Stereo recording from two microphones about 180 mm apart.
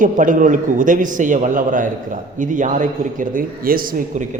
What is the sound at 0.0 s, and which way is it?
A man's voice, 45° right (ahead or behind).